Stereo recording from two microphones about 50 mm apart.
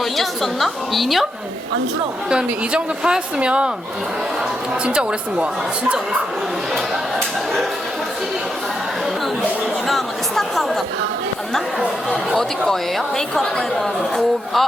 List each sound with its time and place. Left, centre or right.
0.0 s a woman's voice: centre
2.3 s a woman's voice: centre
4.9 s a woman's voice: right
9.8 s chatter: centre
12.4 s speech: centre